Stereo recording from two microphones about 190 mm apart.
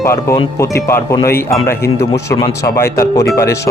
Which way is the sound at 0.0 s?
15° left (ahead or behind).